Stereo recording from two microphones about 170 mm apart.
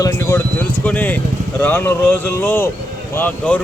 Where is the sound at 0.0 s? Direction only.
15° left (ahead or behind).